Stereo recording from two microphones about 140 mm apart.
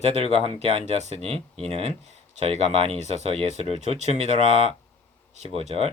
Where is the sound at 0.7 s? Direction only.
50° right (ahead or behind).